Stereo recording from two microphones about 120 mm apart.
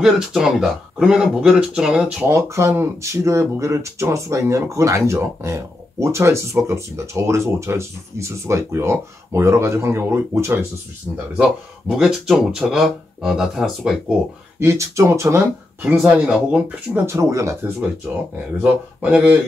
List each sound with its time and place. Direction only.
0.0 s speech: 5° right (ahead or behind)
2.2 s speech: 25° right (ahead or behind)
11.3 s speech: 5° right (ahead or behind)
14.6 s speech: 25° right (ahead or behind)
15.8 s speech: 10° right (ahead or behind)
17.0 s speech: 25° right (ahead or behind)
18.6 s speech: 10° right (ahead or behind)